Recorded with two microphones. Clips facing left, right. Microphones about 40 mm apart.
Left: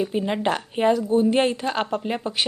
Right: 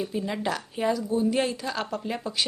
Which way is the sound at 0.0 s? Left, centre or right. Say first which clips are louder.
Left 6 dB; left.